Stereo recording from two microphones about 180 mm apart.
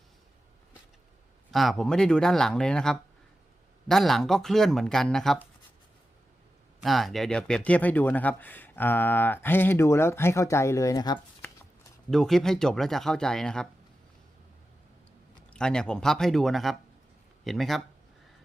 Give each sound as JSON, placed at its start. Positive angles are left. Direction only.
{"t": 1.5, "sound": "speech", "side_deg": 0}
{"t": 6.8, "sound": "speech", "side_deg": 0}
{"t": 12.1, "sound": "speech", "side_deg": 0}
{"t": 15.5, "sound": "speech", "side_deg": 5}